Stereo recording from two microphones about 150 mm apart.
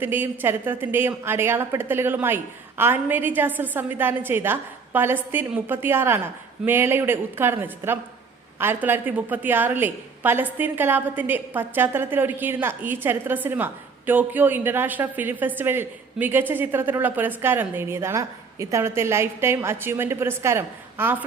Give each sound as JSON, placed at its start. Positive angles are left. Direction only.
{"t": 0.0, "sound": "a woman's voice", "side_deg": -15}